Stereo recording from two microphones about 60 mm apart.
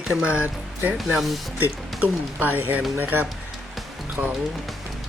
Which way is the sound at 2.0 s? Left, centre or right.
Right.